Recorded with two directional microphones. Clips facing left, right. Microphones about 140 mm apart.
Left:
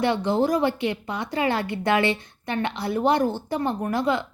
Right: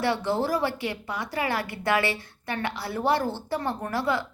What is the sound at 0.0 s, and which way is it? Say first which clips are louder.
A woman's voice: left 4 dB; 20° left (ahead or behind).